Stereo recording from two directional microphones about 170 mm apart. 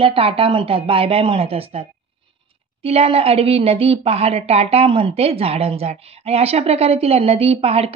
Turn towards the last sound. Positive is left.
turn(degrees=-35)  # may be behind; listen again after turning